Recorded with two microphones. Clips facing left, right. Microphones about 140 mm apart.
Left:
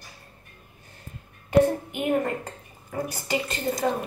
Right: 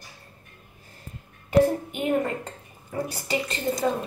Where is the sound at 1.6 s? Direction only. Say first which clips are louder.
Even; 25° right (ahead or behind).